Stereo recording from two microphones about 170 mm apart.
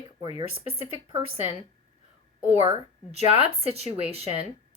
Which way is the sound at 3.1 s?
35° right (ahead or behind).